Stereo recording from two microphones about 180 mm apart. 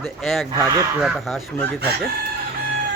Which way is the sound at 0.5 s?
20° right (ahead or behind).